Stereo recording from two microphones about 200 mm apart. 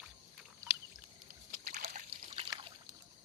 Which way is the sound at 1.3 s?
40° right (ahead or behind).